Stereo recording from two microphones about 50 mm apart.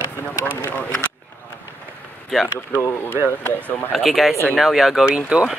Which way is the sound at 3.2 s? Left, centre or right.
Right.